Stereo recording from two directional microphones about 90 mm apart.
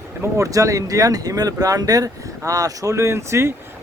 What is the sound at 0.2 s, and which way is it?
Speech, 35° right (ahead or behind).